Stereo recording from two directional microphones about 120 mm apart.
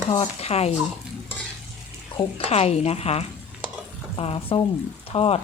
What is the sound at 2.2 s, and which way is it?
Speech, 55° left (ahead or behind).